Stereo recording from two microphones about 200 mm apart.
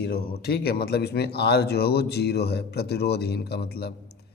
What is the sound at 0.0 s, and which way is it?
A man's voice, 50° left (ahead or behind).